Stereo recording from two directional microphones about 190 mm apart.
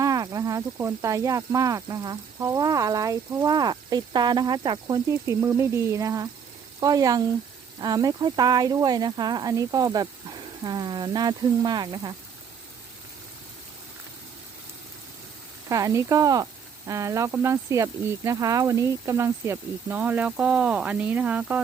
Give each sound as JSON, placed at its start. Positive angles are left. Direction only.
{"t": 0.0, "sound": "speech", "side_deg": -20}
{"t": 15.7, "sound": "speech", "side_deg": -15}